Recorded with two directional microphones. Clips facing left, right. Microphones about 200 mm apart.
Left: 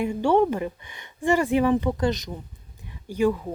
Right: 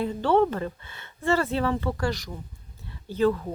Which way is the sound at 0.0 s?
15° left (ahead or behind).